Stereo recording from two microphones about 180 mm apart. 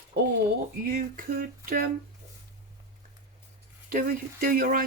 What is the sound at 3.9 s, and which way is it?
Speech, 50° right (ahead or behind).